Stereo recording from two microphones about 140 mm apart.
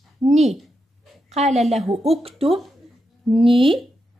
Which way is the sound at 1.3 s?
50° right (ahead or behind).